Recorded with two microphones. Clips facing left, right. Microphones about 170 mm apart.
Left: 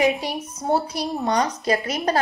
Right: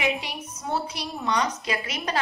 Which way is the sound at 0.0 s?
40° left (ahead or behind).